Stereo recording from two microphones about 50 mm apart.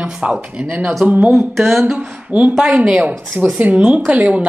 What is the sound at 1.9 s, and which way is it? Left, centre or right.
A woman's voice, right.